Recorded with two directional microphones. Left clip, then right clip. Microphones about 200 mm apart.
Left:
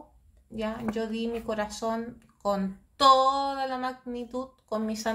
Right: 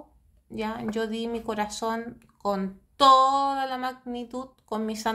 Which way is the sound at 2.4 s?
15° right (ahead or behind).